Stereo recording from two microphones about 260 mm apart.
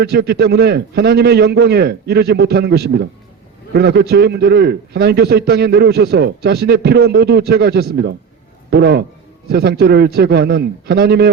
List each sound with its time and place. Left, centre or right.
0.0 s a man's voice: right